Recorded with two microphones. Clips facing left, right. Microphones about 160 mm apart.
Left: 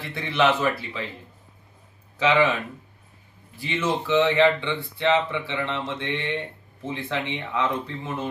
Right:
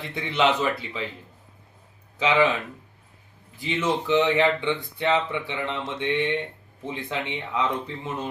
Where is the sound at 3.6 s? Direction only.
15° right (ahead or behind).